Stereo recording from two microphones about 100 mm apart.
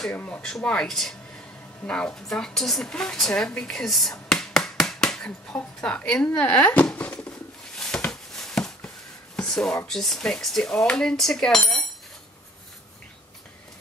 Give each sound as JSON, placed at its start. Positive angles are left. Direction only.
{"t": 0.1, "sound": "speech", "side_deg": 15}
{"t": 0.4, "sound": "a woman's voice", "side_deg": 5}
{"t": 7.7, "sound": "a sound", "side_deg": 5}
{"t": 9.8, "sound": "cutlery", "side_deg": 5}